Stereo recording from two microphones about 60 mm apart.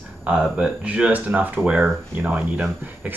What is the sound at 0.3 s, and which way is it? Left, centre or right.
Speech, centre.